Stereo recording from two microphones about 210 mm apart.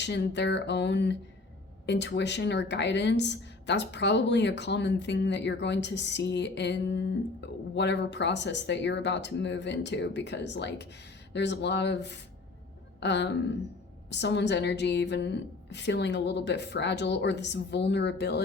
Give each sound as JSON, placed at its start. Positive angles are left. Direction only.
{"t": 0.0, "sound": "speech", "side_deg": 55}